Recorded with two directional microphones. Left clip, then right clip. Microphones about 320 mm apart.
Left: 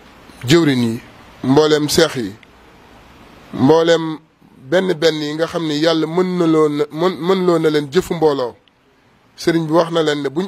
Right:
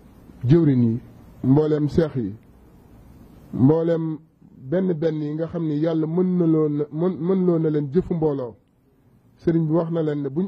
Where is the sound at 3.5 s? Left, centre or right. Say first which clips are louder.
Left 7 dB; centre.